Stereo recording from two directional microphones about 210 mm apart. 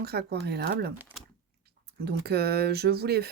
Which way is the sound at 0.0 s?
50° right (ahead or behind).